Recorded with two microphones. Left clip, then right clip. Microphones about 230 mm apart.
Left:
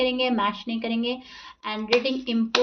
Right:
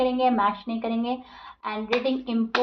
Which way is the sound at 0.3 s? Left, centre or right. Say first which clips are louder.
Right 2 dB; left.